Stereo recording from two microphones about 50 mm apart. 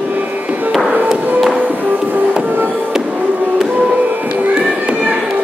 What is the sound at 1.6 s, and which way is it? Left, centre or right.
Music, right.